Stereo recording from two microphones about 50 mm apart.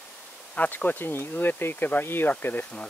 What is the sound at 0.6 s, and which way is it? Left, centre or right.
Speech, left.